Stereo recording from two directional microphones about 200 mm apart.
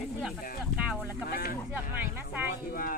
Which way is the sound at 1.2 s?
50° left (ahead or behind).